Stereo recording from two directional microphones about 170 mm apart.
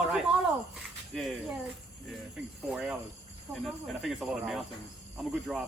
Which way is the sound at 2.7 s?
5° right (ahead or behind).